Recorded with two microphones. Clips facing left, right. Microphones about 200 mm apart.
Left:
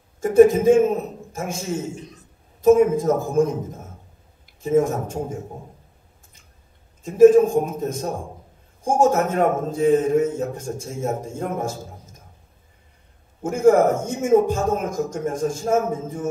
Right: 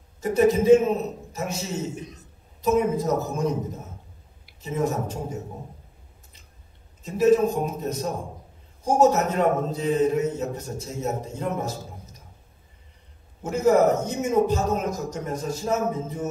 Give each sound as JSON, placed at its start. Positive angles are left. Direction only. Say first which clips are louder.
{"t": 0.2, "sound": "a man's voice", "louder": "left 6 dB", "side_deg": 50}
{"t": 7.0, "sound": "a man's voice", "louder": "left 7 dB", "side_deg": 50}
{"t": 13.4, "sound": "a man's voice", "louder": "left 4 dB", "side_deg": 50}